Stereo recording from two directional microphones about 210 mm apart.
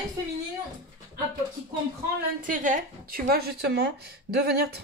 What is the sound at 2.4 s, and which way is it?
Speech, 40° right (ahead or behind).